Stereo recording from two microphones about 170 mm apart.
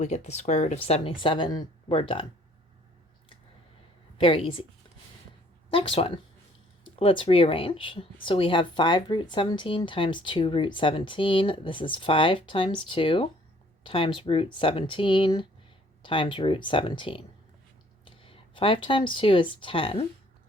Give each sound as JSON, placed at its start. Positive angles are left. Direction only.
{"t": 0.0, "sound": "speech", "side_deg": 40}
{"t": 4.2, "sound": "speech", "side_deg": 30}
{"t": 5.7, "sound": "speech", "side_deg": 30}